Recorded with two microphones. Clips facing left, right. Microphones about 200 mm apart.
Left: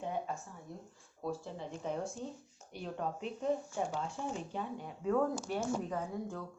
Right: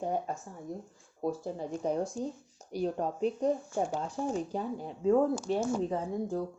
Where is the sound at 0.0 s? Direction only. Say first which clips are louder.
Right 5 dB; 40° right (ahead or behind).